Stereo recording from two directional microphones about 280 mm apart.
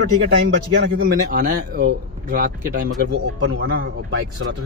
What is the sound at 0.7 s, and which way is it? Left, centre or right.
Speech, right.